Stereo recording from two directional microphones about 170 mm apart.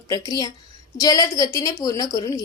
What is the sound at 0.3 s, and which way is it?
A woman's voice, 20° left (ahead or behind).